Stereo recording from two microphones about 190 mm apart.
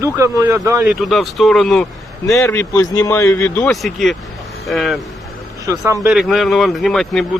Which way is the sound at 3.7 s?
Centre (ahead or behind).